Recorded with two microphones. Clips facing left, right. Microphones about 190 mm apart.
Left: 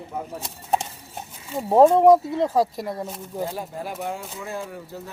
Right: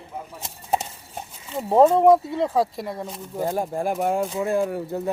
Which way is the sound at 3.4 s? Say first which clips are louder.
Right 10 dB; 50° right (ahead or behind).